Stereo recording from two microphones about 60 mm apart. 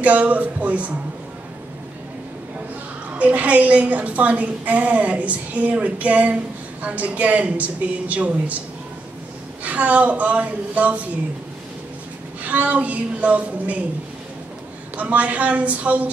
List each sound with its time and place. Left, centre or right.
0.0 s a woman's voice: right
3.2 s a woman's voice: right
9.6 s a woman's voice: right
12.4 s a woman's voice: right
15.0 s a woman's voice: right